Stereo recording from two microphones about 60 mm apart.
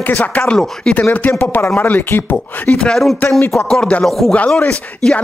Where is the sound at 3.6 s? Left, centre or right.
Centre.